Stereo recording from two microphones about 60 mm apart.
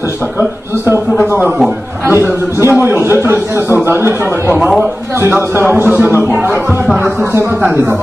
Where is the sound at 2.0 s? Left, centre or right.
Right.